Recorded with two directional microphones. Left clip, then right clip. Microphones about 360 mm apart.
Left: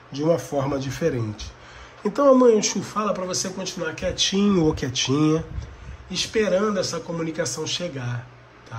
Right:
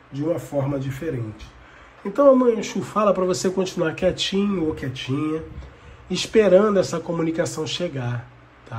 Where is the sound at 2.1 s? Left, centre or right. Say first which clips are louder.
Even; centre.